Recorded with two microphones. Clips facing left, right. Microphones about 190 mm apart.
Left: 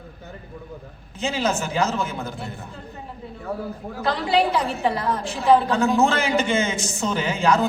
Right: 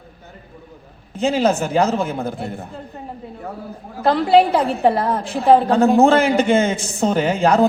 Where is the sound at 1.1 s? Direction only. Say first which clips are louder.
Right 7 dB; 50° right (ahead or behind).